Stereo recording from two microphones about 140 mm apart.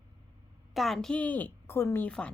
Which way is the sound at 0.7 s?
Centre (ahead or behind).